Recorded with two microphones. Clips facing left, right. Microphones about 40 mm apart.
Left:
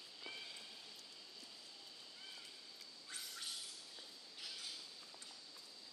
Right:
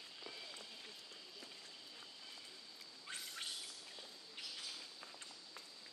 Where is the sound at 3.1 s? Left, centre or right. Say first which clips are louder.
Right 3 dB; right.